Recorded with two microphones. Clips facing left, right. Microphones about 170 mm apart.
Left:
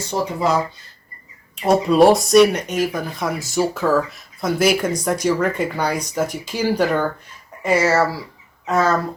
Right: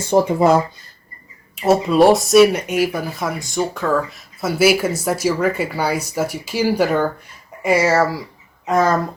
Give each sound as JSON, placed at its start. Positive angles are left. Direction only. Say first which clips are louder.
{"t": 0.1, "sound": "speech", "louder": "right 7 dB", "side_deg": -55}
{"t": 1.6, "sound": "speech", "louder": "even", "side_deg": 0}